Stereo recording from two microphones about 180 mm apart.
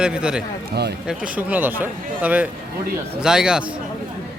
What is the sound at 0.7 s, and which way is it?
Speech, 65° right (ahead or behind).